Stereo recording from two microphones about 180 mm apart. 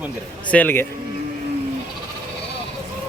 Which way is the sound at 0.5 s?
10° left (ahead or behind).